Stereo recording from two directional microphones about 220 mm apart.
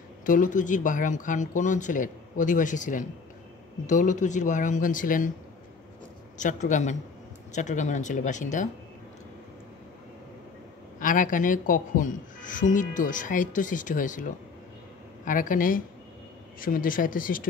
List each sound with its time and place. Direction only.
0.2 s speech: 35° left (ahead or behind)
6.3 s speech: 35° left (ahead or behind)
11.0 s speech: 35° left (ahead or behind)
15.2 s speech: 35° left (ahead or behind)